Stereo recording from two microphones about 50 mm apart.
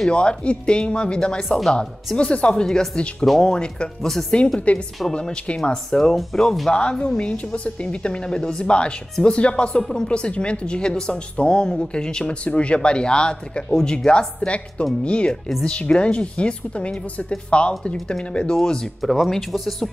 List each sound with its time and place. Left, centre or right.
0.1 s speech: left
6.7 s speech: centre
18.9 s speech: centre